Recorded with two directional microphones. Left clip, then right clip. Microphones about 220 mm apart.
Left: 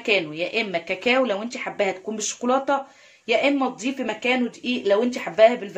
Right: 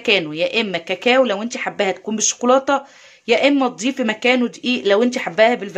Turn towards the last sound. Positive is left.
turn(degrees=-35)  # may be behind; listen again after turning